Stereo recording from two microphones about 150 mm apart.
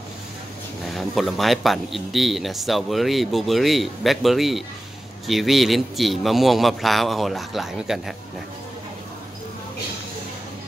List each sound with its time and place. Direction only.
0.9 s speech: centre (ahead or behind)